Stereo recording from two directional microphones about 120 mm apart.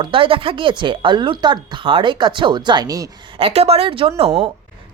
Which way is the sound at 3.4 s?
60° right (ahead or behind).